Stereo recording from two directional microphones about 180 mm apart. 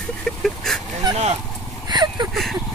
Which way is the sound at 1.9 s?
25° right (ahead or behind).